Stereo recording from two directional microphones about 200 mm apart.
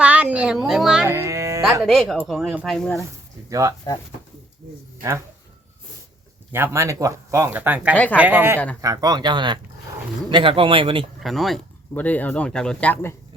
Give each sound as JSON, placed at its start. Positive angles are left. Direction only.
{"t": 0.0, "sound": "a sound", "side_deg": -5}
{"t": 1.1, "sound": "music", "side_deg": -15}
{"t": 1.8, "sound": "speech", "side_deg": 0}
{"t": 2.7, "sound": "speech", "side_deg": 10}
{"t": 3.5, "sound": "speech", "side_deg": -15}
{"t": 6.5, "sound": "speech", "side_deg": -15}
{"t": 11.2, "sound": "speech", "side_deg": 0}